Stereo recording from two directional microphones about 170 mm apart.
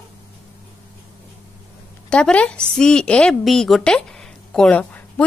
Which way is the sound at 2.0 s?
5° left (ahead or behind).